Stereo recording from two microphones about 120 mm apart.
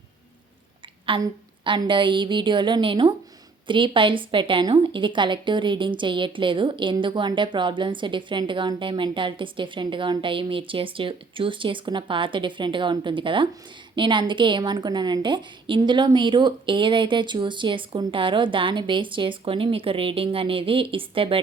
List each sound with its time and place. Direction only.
1.2 s a woman's voice: 35° right (ahead or behind)